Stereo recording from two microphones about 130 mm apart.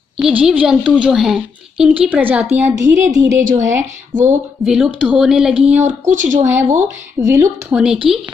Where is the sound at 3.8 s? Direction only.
70° right (ahead or behind).